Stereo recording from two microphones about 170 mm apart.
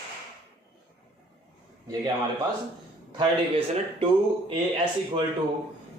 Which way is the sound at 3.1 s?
30° right (ahead or behind).